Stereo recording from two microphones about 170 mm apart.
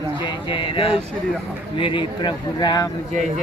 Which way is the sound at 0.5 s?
30° left (ahead or behind).